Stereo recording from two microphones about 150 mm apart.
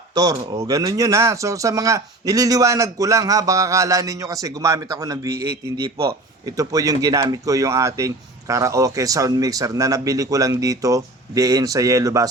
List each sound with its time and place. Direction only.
0.1 s speech: 25° right (ahead or behind)